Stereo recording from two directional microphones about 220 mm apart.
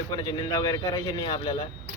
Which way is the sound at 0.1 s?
15° left (ahead or behind).